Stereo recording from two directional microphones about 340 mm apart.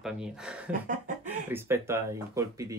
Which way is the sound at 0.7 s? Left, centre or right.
Right.